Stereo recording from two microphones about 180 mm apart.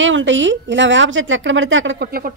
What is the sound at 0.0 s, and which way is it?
A woman's voice, 90° right.